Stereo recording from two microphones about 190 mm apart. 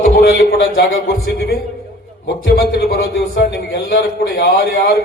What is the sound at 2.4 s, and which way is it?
A man's voice, 55° left (ahead or behind).